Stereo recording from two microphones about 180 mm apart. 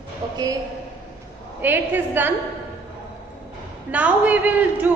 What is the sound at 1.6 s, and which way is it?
Speech, 10° right (ahead or behind).